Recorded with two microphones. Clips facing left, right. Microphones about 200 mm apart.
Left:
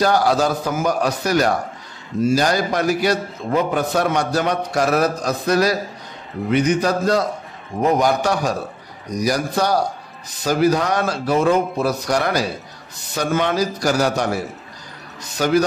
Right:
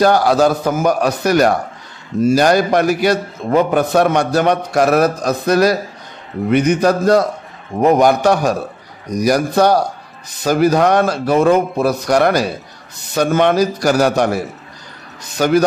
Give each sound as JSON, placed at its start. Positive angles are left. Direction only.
{"t": 0.0, "sound": "a man's voice", "side_deg": -60}
{"t": 15.3, "sound": "a man's voice", "side_deg": -60}